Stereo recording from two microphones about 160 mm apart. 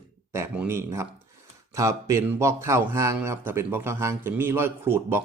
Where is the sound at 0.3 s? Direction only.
15° right (ahead or behind).